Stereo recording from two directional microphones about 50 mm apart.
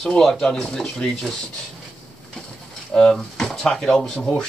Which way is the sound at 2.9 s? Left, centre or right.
Centre.